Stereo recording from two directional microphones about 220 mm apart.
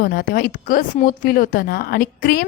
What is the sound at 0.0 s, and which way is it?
A woman's voice, 45° left (ahead or behind).